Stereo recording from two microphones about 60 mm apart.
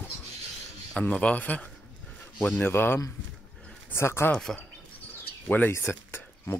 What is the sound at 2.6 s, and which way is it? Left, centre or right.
A man's voice, left.